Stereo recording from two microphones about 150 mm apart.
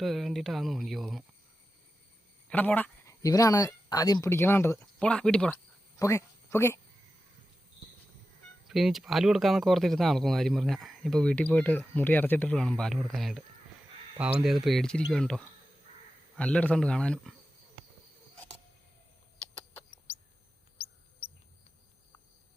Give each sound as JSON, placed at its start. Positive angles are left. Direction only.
{"t": 0.0, "sound": "speech", "side_deg": 0}
{"t": 2.5, "sound": "speech", "side_deg": 10}
{"t": 4.9, "sound": "speech", "side_deg": 5}
{"t": 6.0, "sound": "speech", "side_deg": 20}
{"t": 8.6, "sound": "speech", "side_deg": 0}
{"t": 20.7, "sound": "a sound", "side_deg": 40}